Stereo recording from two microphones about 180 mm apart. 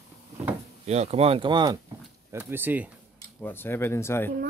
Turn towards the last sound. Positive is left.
turn(degrees=15)  # may be behind; listen again after turning